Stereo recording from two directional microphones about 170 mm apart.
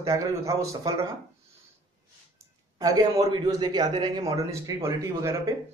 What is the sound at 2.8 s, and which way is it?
Speech, 20° right (ahead or behind).